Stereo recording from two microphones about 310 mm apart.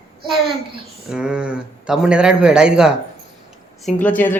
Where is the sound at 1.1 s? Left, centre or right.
Centre.